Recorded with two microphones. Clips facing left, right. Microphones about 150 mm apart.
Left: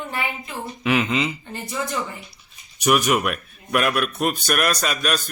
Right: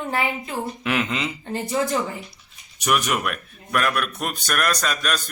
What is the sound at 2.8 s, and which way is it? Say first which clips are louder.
Speech: left 4 dB; 5° left (ahead or behind).